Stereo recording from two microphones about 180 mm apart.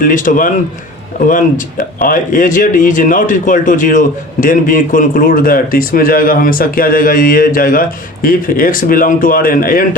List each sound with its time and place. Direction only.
0.0 s speech: 45° left (ahead or behind)